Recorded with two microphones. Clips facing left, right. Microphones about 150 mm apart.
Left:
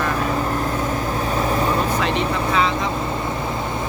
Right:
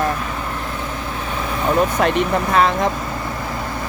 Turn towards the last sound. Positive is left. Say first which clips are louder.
# left 1 dB
turn(degrees=20)  # may be behind; listen again after turning